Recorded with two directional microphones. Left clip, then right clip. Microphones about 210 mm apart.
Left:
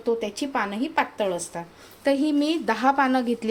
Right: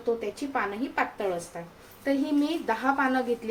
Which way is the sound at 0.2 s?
45° left (ahead or behind).